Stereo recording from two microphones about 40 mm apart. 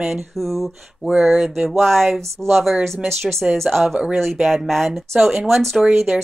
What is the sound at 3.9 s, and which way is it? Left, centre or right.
Speech, right.